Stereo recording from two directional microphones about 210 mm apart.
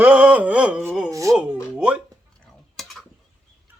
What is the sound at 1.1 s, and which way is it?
Speech, 15° right (ahead or behind).